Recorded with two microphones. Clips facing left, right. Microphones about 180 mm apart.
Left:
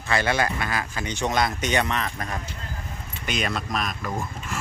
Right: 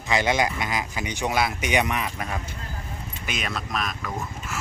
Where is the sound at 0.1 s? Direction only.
15° right (ahead or behind).